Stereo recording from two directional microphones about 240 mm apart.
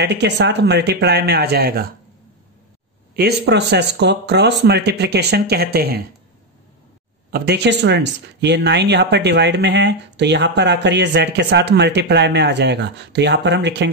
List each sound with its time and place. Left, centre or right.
0.0 s speech: right
3.2 s speech: right
7.2 s speech: right